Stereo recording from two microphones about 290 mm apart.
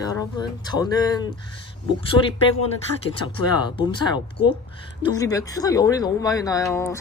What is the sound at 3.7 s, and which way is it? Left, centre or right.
Speech, centre.